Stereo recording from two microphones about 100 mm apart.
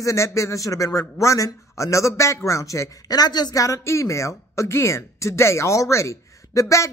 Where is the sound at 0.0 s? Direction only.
30° left (ahead or behind).